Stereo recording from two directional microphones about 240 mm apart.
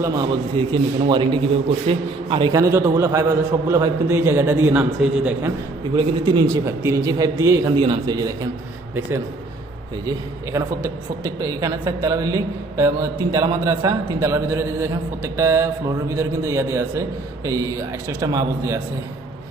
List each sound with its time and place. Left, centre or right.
0.0 s a man's voice: centre
5.9 s a woman's voice: centre
10.1 s a woman's voice: centre